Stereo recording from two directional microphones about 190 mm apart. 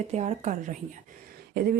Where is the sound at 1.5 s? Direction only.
55° right (ahead or behind).